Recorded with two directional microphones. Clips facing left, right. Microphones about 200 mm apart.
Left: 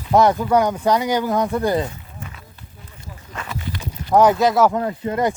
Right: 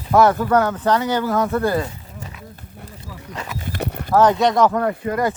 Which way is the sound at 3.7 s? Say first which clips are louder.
Right 5 dB; 60° right (ahead or behind).